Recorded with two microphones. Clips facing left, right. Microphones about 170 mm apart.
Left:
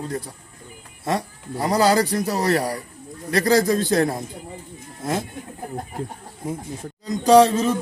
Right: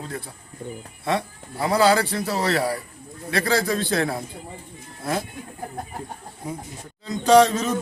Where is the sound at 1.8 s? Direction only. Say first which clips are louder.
Left 1 dB; 40° left (ahead or behind).